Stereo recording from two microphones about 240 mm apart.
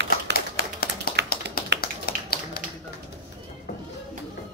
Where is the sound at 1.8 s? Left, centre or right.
Left.